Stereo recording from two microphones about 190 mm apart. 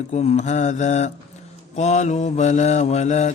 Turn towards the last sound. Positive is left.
turn(degrees=35)  # may be behind; listen again after turning